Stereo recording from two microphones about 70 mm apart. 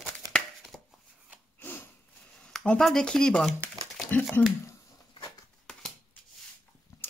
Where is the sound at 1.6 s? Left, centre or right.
Left.